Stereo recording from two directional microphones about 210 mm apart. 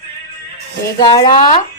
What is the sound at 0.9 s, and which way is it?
Speech, 20° left (ahead or behind).